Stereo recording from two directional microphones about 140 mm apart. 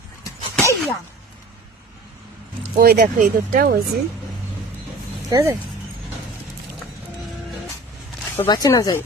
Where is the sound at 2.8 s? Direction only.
80° right.